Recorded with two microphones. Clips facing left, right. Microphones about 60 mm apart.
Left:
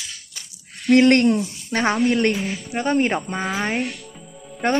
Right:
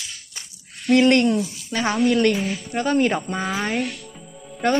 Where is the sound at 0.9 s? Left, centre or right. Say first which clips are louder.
Left 2 dB; left.